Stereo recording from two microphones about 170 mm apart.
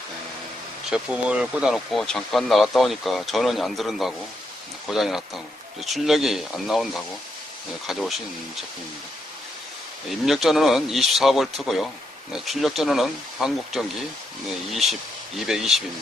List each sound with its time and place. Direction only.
0.9 s speech: 5° right (ahead or behind)
10.1 s speech: centre (ahead or behind)